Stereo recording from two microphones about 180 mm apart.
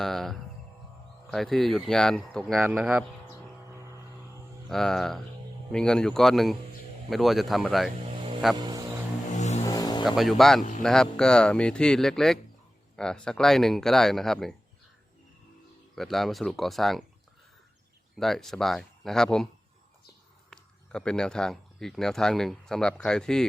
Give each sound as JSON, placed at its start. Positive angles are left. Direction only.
{"t": 0.0, "sound": "speech", "side_deg": 0}
{"t": 4.7, "sound": "speech", "side_deg": 0}
{"t": 8.5, "sound": "music", "side_deg": -25}
{"t": 9.3, "sound": "vehicle", "side_deg": 40}
{"t": 9.7, "sound": "vehicle", "side_deg": 20}
{"t": 10.0, "sound": "speech", "side_deg": 0}
{"t": 16.0, "sound": "speech", "side_deg": 0}
{"t": 18.2, "sound": "speech", "side_deg": 0}
{"t": 20.5, "sound": "speech", "side_deg": 5}